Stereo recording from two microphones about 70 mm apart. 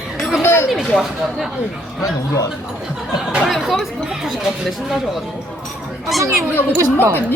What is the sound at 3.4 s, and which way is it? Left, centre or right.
Speech, centre.